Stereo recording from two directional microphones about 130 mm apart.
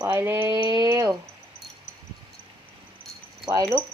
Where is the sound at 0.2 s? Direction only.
20° right (ahead or behind).